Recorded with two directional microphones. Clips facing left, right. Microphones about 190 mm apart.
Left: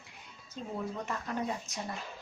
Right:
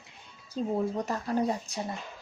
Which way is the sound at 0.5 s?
35° right (ahead or behind).